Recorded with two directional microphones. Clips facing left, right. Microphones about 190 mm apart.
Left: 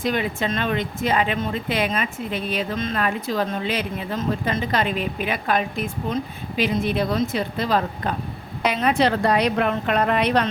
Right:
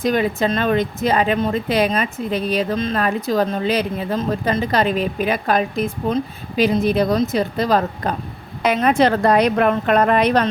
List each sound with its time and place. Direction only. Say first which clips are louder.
0.0 s a woman's voice: right 5 dB; 40° right (ahead or behind)